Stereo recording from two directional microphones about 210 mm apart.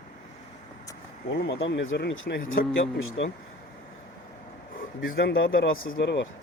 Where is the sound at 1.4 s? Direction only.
65° left (ahead or behind).